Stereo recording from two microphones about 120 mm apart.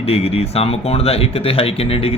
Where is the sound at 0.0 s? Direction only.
55° left (ahead or behind).